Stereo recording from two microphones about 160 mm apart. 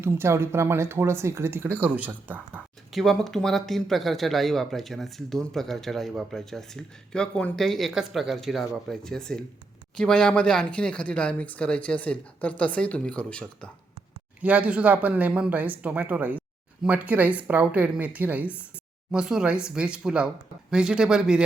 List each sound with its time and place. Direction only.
0.0 s speech: 15° right (ahead or behind)
2.9 s speech: centre (ahead or behind)
14.4 s speech: 10° right (ahead or behind)